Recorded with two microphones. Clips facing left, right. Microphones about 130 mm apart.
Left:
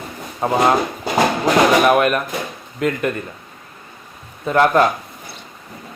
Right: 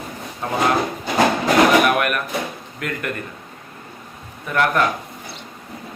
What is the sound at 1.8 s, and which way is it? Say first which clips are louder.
Speech: left 5 dB; 25° left (ahead or behind).